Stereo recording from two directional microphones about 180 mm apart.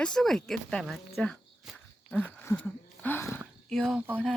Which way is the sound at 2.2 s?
10° left (ahead or behind).